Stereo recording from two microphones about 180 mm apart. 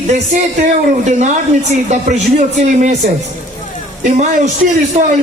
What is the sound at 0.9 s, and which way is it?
Speech, 40° right (ahead or behind).